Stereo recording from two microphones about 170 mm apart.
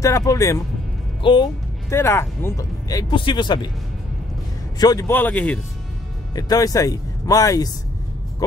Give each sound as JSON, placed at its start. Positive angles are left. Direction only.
{"t": 0.0, "sound": "speech", "side_deg": 20}
{"t": 1.9, "sound": "speech", "side_deg": 15}
{"t": 4.7, "sound": "speech", "side_deg": 20}
{"t": 6.3, "sound": "speech", "side_deg": 20}
{"t": 8.4, "sound": "music", "side_deg": 20}